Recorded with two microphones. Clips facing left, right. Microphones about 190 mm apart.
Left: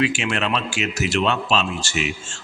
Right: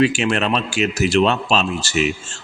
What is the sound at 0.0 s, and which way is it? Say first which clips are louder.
A man's voice: right 5 dB; 40° right (ahead or behind).